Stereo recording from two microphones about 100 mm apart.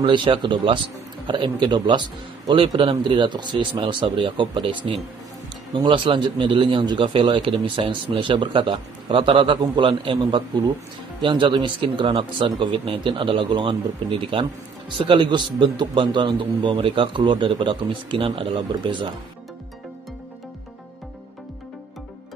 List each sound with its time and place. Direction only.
0.0 s a man's voice: 55° right (ahead or behind)
5.9 s a man's voice: 55° right (ahead or behind)
10.1 s speech: 40° right (ahead or behind)
11.1 s a man's voice: 55° right (ahead or behind)